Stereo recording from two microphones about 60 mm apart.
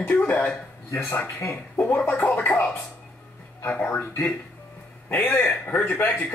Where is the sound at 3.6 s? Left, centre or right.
Left.